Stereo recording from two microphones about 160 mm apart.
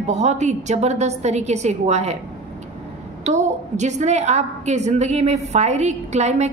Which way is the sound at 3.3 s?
45° right (ahead or behind).